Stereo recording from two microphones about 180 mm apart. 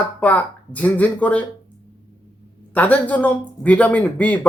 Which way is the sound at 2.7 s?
10° left (ahead or behind).